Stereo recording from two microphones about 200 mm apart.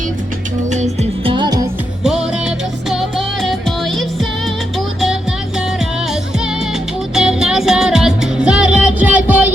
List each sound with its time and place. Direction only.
0.7 s music: 30° right (ahead or behind)
2.9 s music: centre (ahead or behind)
7.1 s music: 5° right (ahead or behind)